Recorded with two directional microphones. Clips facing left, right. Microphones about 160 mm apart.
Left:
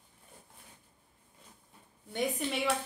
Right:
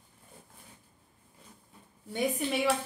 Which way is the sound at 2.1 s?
10° right (ahead or behind).